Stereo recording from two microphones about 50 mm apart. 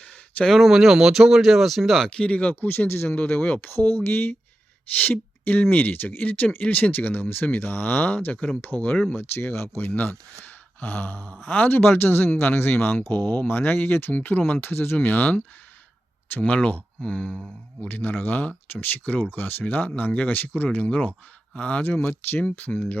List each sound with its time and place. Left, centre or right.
0.0 s a sound: left
0.4 s speech: centre
2.0 s speech: left
3.2 s speech: left
9.0 s speech: left
14.1 s speech: left
14.9 s speech: left
16.5 s speech: left
17.8 s speech: left
22.4 s speech: left